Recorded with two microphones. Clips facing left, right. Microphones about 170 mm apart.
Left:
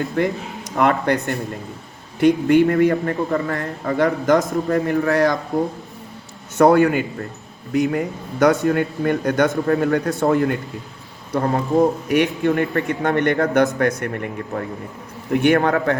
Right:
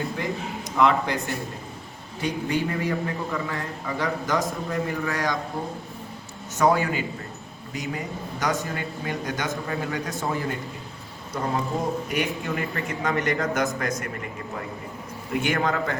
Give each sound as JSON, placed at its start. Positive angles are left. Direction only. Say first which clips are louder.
{"t": 0.2, "sound": "speech", "louder": "left 8 dB", "side_deg": 60}
{"t": 2.2, "sound": "a man's voice", "louder": "left 12 dB", "side_deg": 60}
{"t": 6.6, "sound": "speech", "louder": "left 8 dB", "side_deg": 60}